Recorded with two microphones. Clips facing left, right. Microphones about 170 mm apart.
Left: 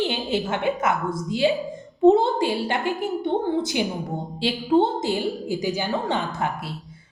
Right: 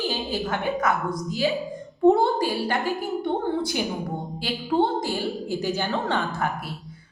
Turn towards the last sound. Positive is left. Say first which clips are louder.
# left 1 dB
turn(degrees=15)  # may be behind; listen again after turning